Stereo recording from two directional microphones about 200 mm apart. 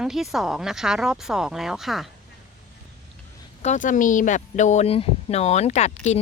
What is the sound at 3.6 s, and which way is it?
Speech, 40° left (ahead or behind).